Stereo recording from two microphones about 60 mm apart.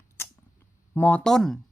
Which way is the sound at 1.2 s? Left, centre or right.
Centre.